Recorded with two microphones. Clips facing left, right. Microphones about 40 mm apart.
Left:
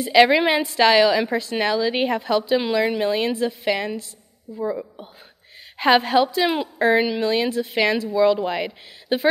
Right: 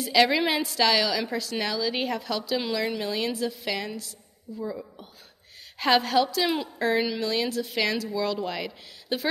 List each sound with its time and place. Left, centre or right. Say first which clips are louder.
0.0 s a woman's voice: left 6 dB; left